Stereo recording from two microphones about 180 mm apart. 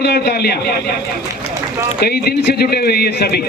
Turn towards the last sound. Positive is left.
turn(degrees=60)  # may be behind; listen again after turning